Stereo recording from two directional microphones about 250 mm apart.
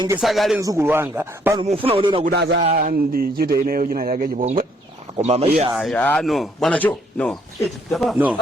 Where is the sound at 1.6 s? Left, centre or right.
Right.